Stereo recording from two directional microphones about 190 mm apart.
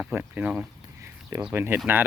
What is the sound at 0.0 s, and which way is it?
Speech, 10° right (ahead or behind).